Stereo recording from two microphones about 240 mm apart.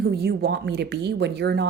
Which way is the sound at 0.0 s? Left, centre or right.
Right.